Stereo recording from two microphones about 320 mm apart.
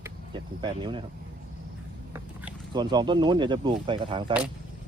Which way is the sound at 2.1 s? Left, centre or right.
Centre.